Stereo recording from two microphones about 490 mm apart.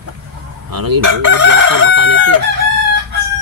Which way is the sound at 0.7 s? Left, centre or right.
Right.